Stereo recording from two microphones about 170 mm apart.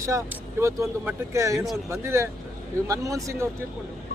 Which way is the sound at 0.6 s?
15° right (ahead or behind).